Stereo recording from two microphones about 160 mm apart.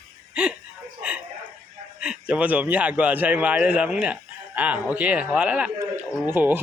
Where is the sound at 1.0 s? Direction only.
10° right (ahead or behind).